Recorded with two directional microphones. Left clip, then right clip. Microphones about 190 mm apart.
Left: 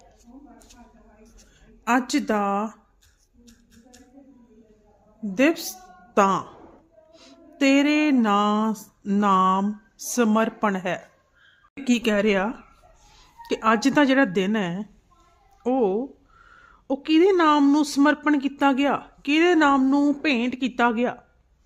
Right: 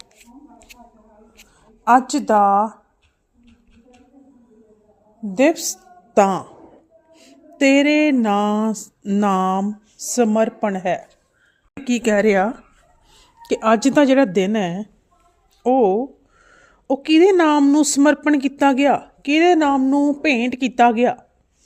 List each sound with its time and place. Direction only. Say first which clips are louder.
1.8 s speech: right 8 dB; 10° right (ahead or behind)
5.3 s speech: right 5 dB; 10° right (ahead or behind)
7.1 s a sound: right 3 dB; 5° right (ahead or behind)
10.2 s a woman's voice: right 4 dB; 5° right (ahead or behind)
11.9 s a woman's voice: right 7 dB; 15° right (ahead or behind)